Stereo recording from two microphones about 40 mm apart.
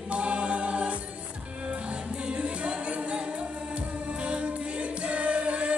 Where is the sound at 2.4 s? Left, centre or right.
Right.